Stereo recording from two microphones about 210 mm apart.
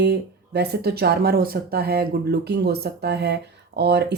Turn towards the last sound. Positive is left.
turn(degrees=-55)  # may be behind; listen again after turning